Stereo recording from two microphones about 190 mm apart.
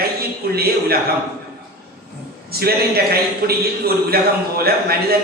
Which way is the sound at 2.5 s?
55° right (ahead or behind).